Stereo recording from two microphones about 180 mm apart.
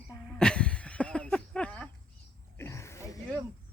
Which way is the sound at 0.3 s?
5° left (ahead or behind).